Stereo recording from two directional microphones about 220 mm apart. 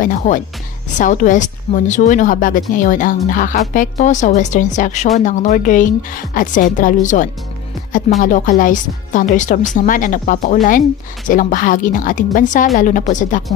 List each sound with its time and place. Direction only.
0.0 s a woman's voice: 35° left (ahead or behind)